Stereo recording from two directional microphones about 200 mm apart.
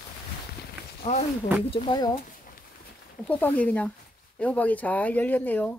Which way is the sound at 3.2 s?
5° left (ahead or behind).